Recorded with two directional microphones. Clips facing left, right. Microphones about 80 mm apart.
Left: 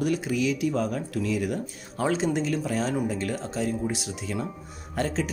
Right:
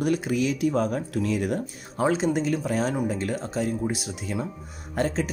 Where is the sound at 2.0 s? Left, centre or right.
Right.